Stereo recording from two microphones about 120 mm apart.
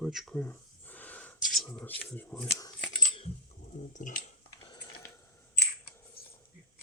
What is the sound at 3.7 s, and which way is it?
Speech, 90° left.